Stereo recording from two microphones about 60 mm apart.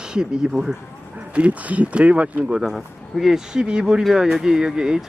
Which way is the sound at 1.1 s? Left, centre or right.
Right.